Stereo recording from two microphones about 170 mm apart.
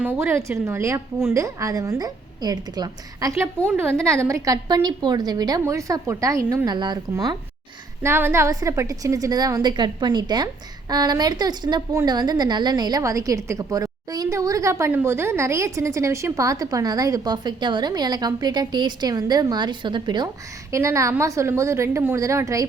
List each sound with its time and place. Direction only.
0.0 s a woman's voice: 10° right (ahead or behind)